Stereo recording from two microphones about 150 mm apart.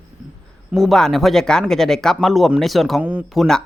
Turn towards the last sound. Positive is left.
turn(degrees=0)  # may be behind; listen again after turning